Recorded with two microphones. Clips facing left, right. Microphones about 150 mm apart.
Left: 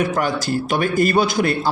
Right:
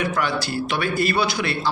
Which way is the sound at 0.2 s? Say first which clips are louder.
Left 3 dB; 45° left (ahead or behind).